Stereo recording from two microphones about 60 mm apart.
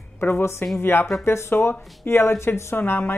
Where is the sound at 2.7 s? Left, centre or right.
Left.